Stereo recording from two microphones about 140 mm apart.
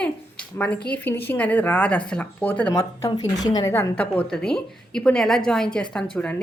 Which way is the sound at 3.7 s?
15° left (ahead or behind).